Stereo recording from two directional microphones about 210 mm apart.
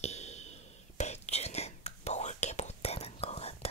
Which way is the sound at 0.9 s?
30° left (ahead or behind).